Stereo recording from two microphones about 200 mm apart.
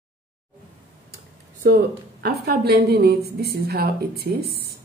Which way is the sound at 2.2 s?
55° right (ahead or behind).